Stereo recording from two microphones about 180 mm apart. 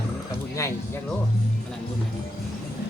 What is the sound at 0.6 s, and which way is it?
Speech, 15° left (ahead or behind).